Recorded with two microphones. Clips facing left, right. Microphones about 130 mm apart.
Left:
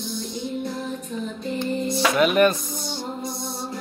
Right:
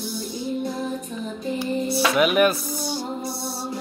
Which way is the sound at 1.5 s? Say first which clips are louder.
Right 1 dB; 10° right (ahead or behind).